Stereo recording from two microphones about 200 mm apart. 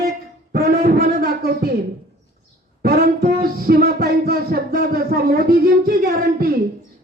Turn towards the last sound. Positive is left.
turn(degrees=-50)  # may be behind; listen again after turning